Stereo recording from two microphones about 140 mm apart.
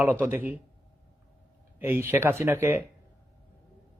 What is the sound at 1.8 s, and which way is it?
A man's voice, 15° right (ahead or behind).